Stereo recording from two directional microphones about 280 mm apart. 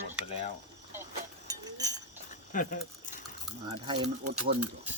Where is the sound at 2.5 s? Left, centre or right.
Left.